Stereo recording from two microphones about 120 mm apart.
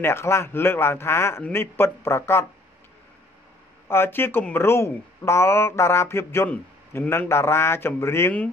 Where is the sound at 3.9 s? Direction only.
20° left (ahead or behind).